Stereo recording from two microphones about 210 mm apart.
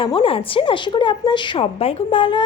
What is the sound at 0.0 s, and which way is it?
A woman's voice, 25° left (ahead or behind).